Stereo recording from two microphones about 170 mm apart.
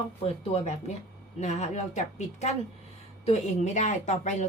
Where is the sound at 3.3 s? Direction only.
45° left (ahead or behind).